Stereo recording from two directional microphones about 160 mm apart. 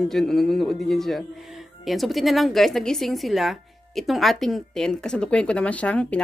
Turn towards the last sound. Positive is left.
turn(degrees=10)  # may be behind; listen again after turning